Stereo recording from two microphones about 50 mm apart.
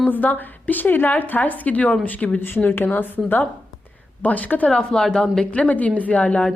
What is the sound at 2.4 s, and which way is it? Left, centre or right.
A woman's voice, left.